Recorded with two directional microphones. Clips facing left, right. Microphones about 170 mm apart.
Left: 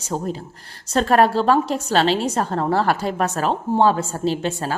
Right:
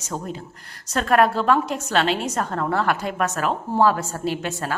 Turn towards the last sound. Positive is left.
turn(degrees=30)  # may be behind; listen again after turning